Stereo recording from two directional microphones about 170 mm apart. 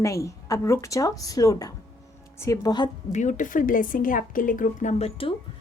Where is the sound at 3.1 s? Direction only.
45° left (ahead or behind).